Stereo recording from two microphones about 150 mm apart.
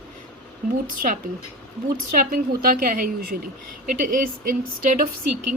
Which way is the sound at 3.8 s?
60° right (ahead or behind).